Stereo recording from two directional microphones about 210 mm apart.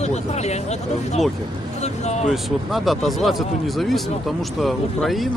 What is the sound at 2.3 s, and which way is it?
Speech, centre (ahead or behind).